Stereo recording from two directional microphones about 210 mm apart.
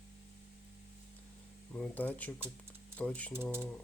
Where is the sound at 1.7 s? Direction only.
5° left (ahead or behind).